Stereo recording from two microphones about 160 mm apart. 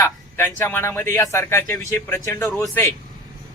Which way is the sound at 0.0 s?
15° left (ahead or behind).